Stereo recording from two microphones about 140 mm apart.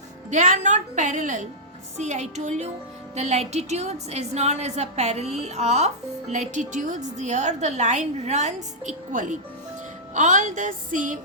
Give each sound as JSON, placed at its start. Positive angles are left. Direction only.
{"t": 0.3, "sound": "a woman's voice", "side_deg": -60}